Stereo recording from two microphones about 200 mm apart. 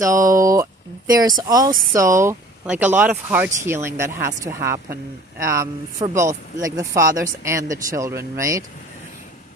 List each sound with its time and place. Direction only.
0.0 s speech: 15° right (ahead or behind)